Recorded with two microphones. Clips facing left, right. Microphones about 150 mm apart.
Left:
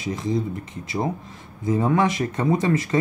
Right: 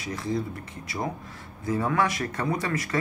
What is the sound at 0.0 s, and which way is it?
Speech, 20° left (ahead or behind).